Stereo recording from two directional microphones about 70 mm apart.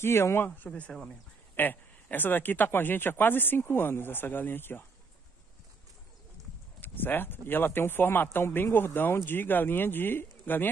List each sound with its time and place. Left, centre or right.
0.0 s speech: left
0.7 s speech: centre
6.8 s speech: left